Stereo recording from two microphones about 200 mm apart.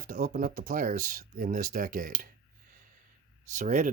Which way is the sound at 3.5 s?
40° right (ahead or behind).